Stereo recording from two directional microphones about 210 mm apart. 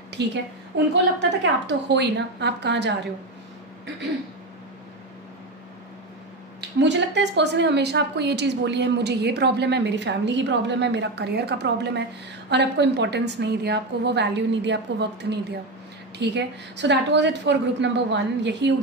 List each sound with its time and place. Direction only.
0.2 s a woman's voice: 55° right (ahead or behind)
6.8 s a woman's voice: 55° right (ahead or behind)